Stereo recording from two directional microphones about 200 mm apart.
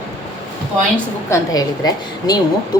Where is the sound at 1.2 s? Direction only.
15° left (ahead or behind).